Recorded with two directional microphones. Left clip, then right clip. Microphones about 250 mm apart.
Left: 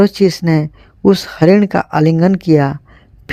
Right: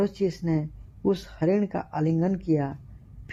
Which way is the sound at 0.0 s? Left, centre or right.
Left.